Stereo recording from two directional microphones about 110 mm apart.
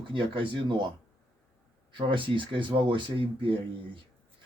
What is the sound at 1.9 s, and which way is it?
Speech, 50° right (ahead or behind).